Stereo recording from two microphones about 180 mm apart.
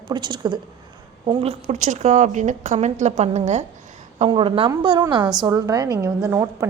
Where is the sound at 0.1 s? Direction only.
25° right (ahead or behind).